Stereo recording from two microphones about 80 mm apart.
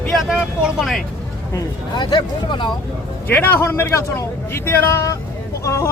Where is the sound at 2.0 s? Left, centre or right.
Left.